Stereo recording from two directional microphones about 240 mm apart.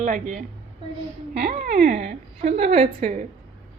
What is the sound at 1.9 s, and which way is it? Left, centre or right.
A woman's voice, right.